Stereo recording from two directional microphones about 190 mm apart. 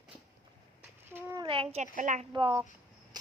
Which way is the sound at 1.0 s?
10° right (ahead or behind).